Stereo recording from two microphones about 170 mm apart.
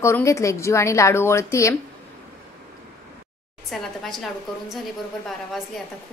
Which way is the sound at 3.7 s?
Centre (ahead or behind).